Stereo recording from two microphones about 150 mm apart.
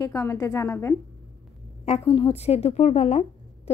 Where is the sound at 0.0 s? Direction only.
20° left (ahead or behind).